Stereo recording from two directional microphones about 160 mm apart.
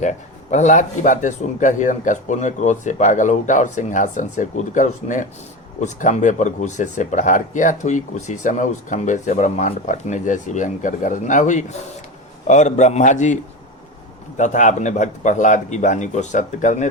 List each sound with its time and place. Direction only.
0.0 s speech: 50° left (ahead or behind)